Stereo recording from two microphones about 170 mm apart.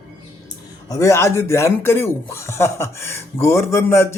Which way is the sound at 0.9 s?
20° left (ahead or behind).